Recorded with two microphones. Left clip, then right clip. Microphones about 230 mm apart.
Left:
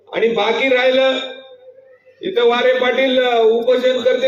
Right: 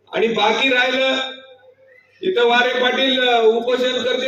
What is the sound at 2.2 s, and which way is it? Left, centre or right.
Speech, right.